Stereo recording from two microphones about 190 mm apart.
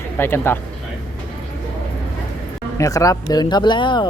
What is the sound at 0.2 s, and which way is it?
Speech, 10° left (ahead or behind).